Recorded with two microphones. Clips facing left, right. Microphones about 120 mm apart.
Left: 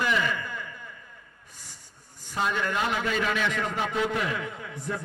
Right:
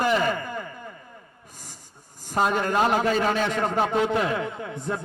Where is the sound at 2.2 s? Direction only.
40° right (ahead or behind).